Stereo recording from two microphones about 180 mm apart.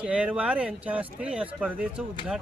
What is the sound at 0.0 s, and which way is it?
Speech, 5° right (ahead or behind).